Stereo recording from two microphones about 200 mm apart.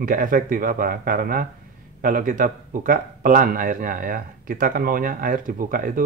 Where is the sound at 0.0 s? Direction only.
45° right (ahead or behind).